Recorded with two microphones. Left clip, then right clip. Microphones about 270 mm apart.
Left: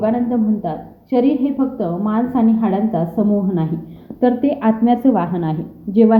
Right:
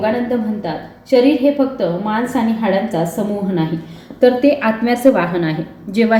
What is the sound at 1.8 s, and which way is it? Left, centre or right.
Speech, left.